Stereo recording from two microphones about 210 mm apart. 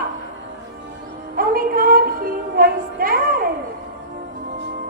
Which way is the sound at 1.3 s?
45° right (ahead or behind).